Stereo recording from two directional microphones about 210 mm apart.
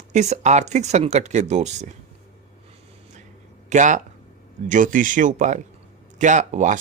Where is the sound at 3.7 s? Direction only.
35° right (ahead or behind).